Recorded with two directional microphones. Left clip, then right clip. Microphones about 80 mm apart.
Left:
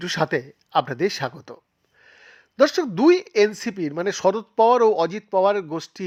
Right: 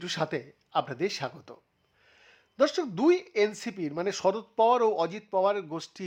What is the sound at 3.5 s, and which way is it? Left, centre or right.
Speech, left.